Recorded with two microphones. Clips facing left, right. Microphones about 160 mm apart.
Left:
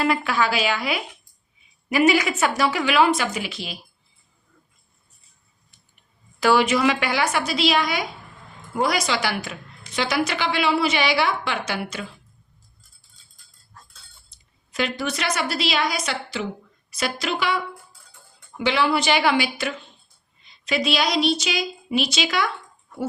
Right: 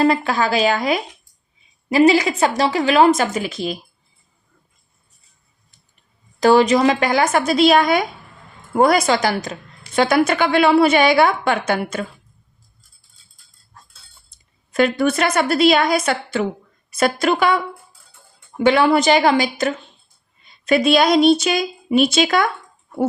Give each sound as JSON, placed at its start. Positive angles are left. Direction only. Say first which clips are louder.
{"t": 0.0, "sound": "a woman's voice", "louder": "right 5 dB", "side_deg": -40}
{"t": 6.4, "sound": "a woman's voice", "louder": "right 5 dB", "side_deg": -40}
{"t": 9.9, "sound": "a woman's voice", "louder": "right 8 dB", "side_deg": -50}
{"t": 14.7, "sound": "a woman's voice", "louder": "right 9 dB", "side_deg": -50}
{"t": 20.4, "sound": "a woman's voice", "louder": "right 8 dB", "side_deg": -50}